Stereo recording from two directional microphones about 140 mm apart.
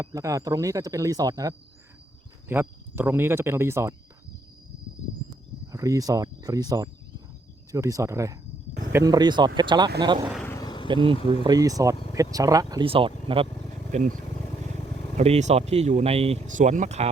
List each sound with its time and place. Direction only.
0.0 s speech: 25° right (ahead or behind)
2.5 s speech: 15° right (ahead or behind)
5.7 s speech: 25° right (ahead or behind)
9.1 s speech: 30° right (ahead or behind)
10.6 s vehicle: 30° left (ahead or behind)
10.8 s speech: 35° right (ahead or behind)
12.8 s speech: 40° right (ahead or behind)
13.9 s speech: 65° right (ahead or behind)
15.2 s speech: 50° right (ahead or behind)
16.5 s speech: 65° right (ahead or behind)